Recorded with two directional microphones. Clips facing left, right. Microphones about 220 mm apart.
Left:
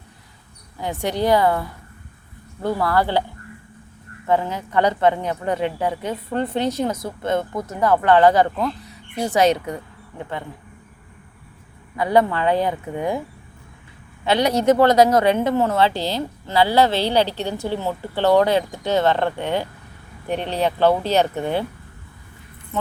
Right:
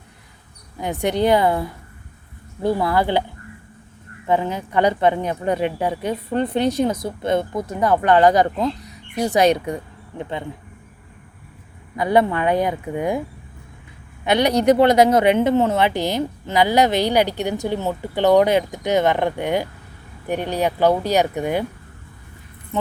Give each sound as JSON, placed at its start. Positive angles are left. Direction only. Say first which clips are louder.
{"t": 0.8, "sound": "a woman's voice", "louder": "right 3 dB", "side_deg": -20}
{"t": 4.3, "sound": "a woman's voice", "louder": "even", "side_deg": -15}
{"t": 9.6, "sound": "speech", "louder": "right 3 dB", "side_deg": -25}
{"t": 12.0, "sound": "a woman's voice", "louder": "even", "side_deg": -20}
{"t": 14.3, "sound": "a woman's voice", "louder": "right 1 dB", "side_deg": -15}